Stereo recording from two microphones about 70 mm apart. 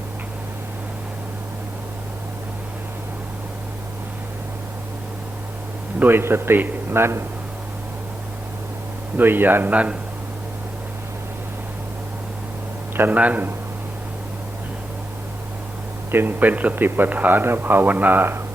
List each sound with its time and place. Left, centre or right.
6.0 s a man's voice: right
9.1 s a man's voice: right
13.0 s a man's voice: right
16.1 s a man's voice: right